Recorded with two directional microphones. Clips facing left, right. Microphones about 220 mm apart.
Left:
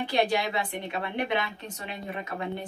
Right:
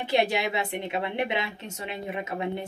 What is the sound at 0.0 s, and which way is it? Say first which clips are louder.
A woman's voice: right 1 dB; 25° right (ahead or behind).